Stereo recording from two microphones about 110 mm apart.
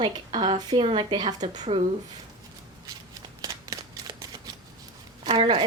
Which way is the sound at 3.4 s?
35° right (ahead or behind).